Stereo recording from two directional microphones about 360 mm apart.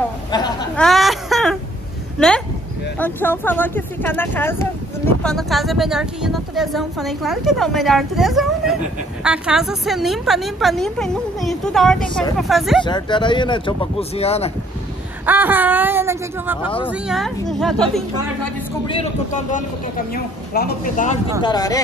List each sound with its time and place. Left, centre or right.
0.3 s a sound: centre
0.8 s whimper: centre
2.1 s a woman's voice: centre
12.8 s speech: centre
15.2 s a woman's voice: centre
16.6 s speech: centre
16.9 s a woman's voice: centre
18.9 s speech: centre